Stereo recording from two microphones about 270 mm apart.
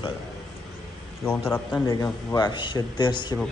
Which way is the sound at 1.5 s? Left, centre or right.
Centre.